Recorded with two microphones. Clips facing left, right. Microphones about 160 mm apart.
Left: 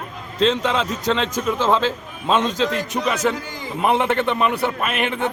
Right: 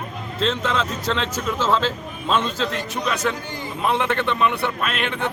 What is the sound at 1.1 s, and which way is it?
Speech, centre (ahead or behind).